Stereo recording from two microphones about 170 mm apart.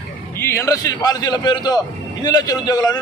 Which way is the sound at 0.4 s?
15° left (ahead or behind).